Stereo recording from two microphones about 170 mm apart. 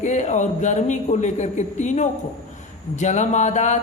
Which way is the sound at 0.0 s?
45° left (ahead or behind).